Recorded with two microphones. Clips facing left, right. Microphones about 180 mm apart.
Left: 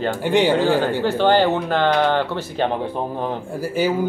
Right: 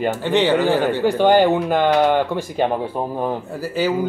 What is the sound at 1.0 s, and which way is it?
Speech, 15° right (ahead or behind).